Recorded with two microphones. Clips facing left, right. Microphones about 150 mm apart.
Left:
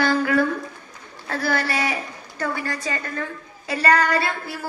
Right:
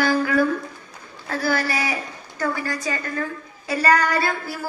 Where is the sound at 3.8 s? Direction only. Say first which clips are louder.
Even; 30° left (ahead or behind).